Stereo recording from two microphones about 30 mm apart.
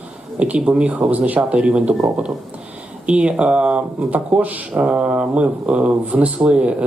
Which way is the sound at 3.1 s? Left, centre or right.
Right.